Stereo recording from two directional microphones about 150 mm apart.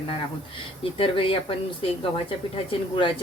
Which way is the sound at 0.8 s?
35° left (ahead or behind).